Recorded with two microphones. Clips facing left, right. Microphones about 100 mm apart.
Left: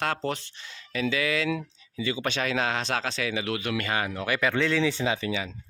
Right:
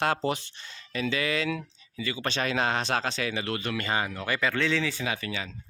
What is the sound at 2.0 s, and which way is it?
Speech, 15° left (ahead or behind).